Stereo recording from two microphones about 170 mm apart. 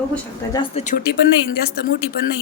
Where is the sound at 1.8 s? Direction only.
70° left (ahead or behind).